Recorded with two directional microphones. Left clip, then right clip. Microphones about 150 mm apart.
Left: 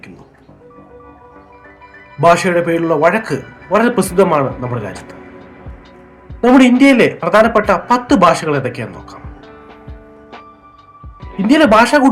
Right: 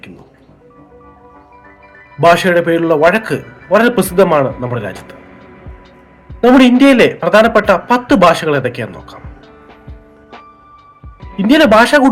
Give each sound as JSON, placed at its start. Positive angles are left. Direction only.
{"t": 2.2, "sound": "a man's voice", "side_deg": -15}
{"t": 6.5, "sound": "a man's voice", "side_deg": -15}
{"t": 11.3, "sound": "a man's voice", "side_deg": -15}